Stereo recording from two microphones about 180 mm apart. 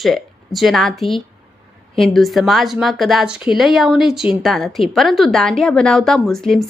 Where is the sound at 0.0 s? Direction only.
Centre (ahead or behind).